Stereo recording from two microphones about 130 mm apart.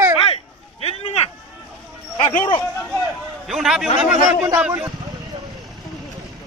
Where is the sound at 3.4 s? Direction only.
5° right (ahead or behind).